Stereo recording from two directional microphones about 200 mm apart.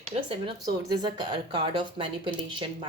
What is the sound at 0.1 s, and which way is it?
Speech, 25° right (ahead or behind).